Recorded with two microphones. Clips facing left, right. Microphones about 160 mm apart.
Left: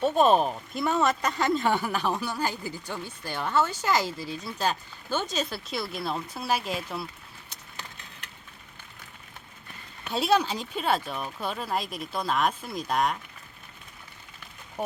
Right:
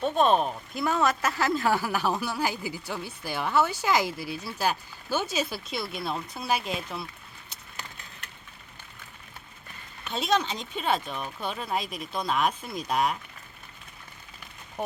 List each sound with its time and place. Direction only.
0.0 s speech: 5° left (ahead or behind)
10.1 s speech: 5° left (ahead or behind)
14.8 s speech: 5° left (ahead or behind)